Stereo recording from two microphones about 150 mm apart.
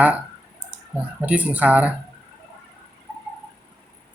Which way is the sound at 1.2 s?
10° right (ahead or behind).